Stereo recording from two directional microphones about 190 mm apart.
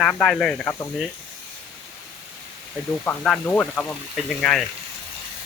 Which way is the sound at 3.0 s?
10° left (ahead or behind).